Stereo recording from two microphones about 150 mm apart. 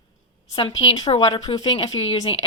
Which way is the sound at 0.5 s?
35° left (ahead or behind).